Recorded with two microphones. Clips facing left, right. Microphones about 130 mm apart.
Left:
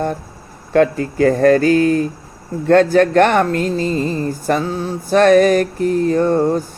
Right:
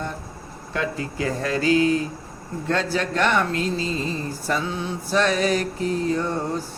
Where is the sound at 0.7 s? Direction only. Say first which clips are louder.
Left 13 dB; 50° left (ahead or behind).